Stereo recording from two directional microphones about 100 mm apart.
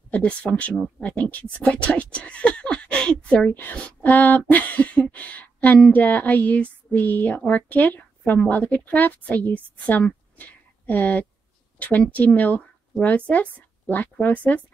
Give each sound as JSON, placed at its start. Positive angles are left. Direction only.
{"t": 0.1, "sound": "a woman's voice", "side_deg": 15}